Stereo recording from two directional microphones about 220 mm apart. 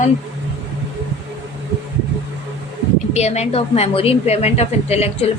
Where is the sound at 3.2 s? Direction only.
30° left (ahead or behind).